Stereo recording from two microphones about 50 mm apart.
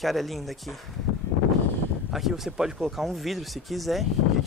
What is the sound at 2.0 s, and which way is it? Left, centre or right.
Speech, centre.